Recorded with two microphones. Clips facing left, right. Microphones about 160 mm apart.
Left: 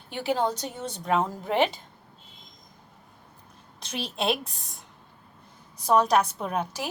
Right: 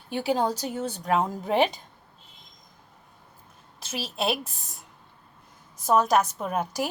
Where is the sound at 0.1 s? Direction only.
15° right (ahead or behind).